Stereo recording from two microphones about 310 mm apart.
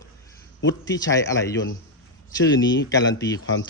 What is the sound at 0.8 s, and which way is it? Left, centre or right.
Speech, centre.